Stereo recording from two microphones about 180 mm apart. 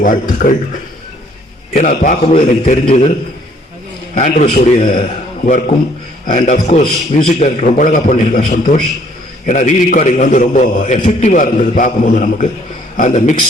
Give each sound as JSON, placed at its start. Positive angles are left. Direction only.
{"t": 0.0, "sound": "a man's voice", "side_deg": 45}
{"t": 1.7, "sound": "a man's voice", "side_deg": 45}
{"t": 4.1, "sound": "a man's voice", "side_deg": 45}